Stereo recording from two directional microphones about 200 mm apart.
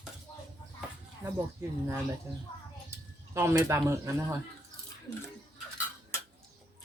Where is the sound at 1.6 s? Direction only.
15° right (ahead or behind).